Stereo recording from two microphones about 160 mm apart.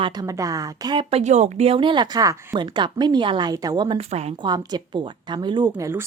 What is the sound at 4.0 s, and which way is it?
Speech, 40° right (ahead or behind).